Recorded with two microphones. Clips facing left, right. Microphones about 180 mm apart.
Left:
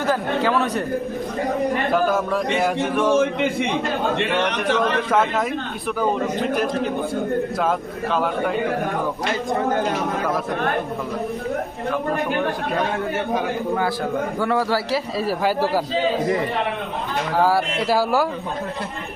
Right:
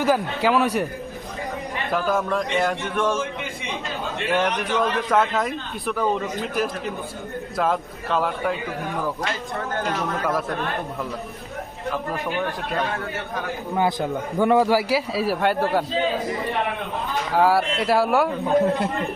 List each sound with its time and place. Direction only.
0.0 s a man's voice: 10° right (ahead or behind)
1.9 s speech: 5° left (ahead or behind)
3.2 s a man's voice: 60° left (ahead or behind)
5.1 s speech: centre (ahead or behind)
7.6 s speech: centre (ahead or behind)
14.3 s a man's voice: 20° right (ahead or behind); by 15.8 s centre (ahead or behind)
17.3 s speech: centre (ahead or behind)